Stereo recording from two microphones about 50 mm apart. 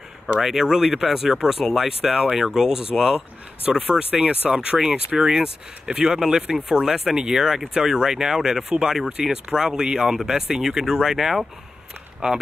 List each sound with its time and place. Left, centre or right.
0.4 s speech: centre